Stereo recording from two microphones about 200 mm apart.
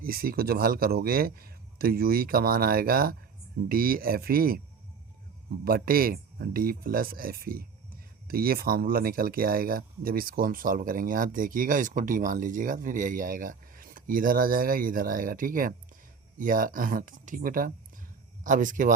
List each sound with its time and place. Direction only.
0.0 s speech: 45° right (ahead or behind)
5.6 s speech: 45° right (ahead or behind)